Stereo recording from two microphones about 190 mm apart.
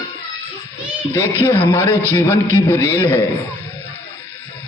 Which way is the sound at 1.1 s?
10° left (ahead or behind).